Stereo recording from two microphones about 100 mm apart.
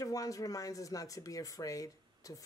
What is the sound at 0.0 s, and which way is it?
Speech, 35° left (ahead or behind).